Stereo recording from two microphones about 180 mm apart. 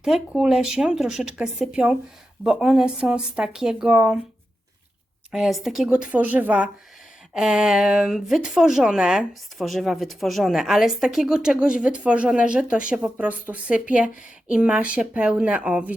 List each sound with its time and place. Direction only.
0.0 s speech: 5° right (ahead or behind)
5.3 s speech: centre (ahead or behind)